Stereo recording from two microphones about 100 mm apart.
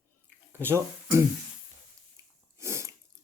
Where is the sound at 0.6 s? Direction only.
25° right (ahead or behind).